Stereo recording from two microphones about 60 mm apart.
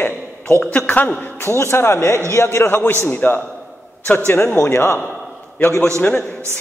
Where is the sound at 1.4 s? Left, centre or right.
Left.